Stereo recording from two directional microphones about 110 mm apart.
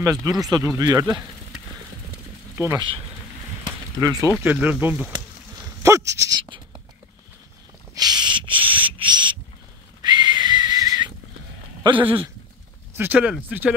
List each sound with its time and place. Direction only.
0.0 s speech: 30° right (ahead or behind)
2.5 s speech: 25° right (ahead or behind)
3.6 s a sound: 35° right (ahead or behind)
4.4 s speech: 15° right (ahead or behind)
5.8 s goat: 30° right (ahead or behind)
7.9 s a sound: 40° right (ahead or behind)
10.0 s whistle: 40° right (ahead or behind)
11.8 s a sound: 50° right (ahead or behind)
12.9 s speech: 15° right (ahead or behind)